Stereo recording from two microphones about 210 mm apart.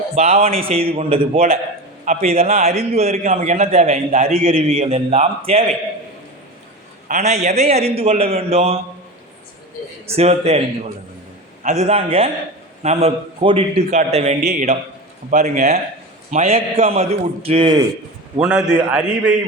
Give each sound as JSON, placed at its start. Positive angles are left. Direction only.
{"t": 0.2, "sound": "a man's voice", "side_deg": -30}
{"t": 7.1, "sound": "a man's voice", "side_deg": -30}
{"t": 10.2, "sound": "a man's voice", "side_deg": -30}
{"t": 11.6, "sound": "a man's voice", "side_deg": -35}
{"t": 18.3, "sound": "a man's voice", "side_deg": -5}